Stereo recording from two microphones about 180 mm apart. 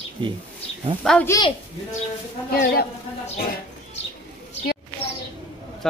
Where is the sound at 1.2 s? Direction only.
15° left (ahead or behind).